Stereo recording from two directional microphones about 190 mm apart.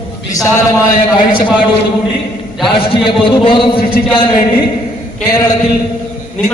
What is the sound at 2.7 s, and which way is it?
Speech, 25° left (ahead or behind).